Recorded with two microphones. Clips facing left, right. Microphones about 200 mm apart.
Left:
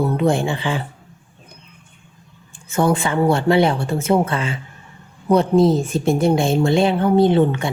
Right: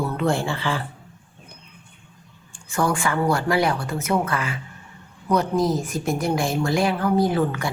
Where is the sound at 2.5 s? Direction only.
20° left (ahead or behind).